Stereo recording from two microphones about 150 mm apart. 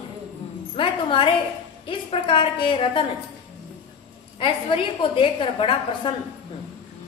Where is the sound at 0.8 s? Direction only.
35° left (ahead or behind).